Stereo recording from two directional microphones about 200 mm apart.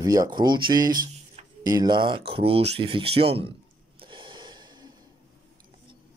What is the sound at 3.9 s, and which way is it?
Gasp, 25° right (ahead or behind).